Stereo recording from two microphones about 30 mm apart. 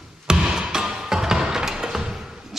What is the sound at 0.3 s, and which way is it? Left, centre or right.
Music, right.